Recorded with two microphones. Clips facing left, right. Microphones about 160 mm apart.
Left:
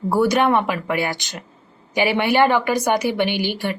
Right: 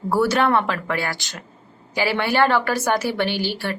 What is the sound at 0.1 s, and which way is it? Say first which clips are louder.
A woman's voice: left 1 dB; 15° left (ahead or behind).